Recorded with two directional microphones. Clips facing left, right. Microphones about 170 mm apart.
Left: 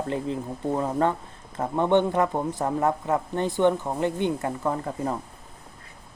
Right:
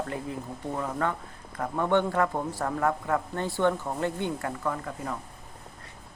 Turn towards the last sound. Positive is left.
turn(degrees=30)  # may be behind; listen again after turning